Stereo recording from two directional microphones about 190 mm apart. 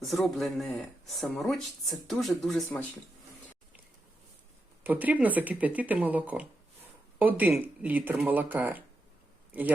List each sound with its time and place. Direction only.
0.0 s speech: centre (ahead or behind)
4.8 s a man's voice: 10° right (ahead or behind)